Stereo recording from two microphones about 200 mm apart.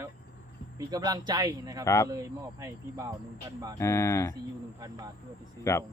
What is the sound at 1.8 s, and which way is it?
Speech, 15° left (ahead or behind).